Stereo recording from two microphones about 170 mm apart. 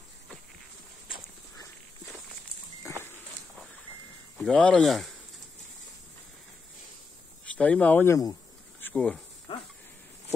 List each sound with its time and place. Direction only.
2.9 s a sound: 15° left (ahead or behind)
4.4 s speech: 5° left (ahead or behind)
7.4 s speech: 10° left (ahead or behind)
8.8 s speech: 5° left (ahead or behind)